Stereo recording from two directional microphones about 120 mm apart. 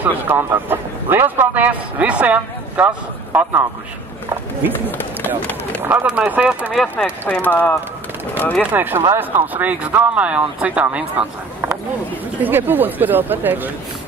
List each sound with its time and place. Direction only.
0.0 s a man's voice: 15° right (ahead or behind)
4.8 s speech: 15° left (ahead or behind)
5.8 s a man's voice: 15° right (ahead or behind)
6.7 s speech: centre (ahead or behind)
7.2 s speech: 15° left (ahead or behind)
8.7 s a man's voice: 15° right (ahead or behind)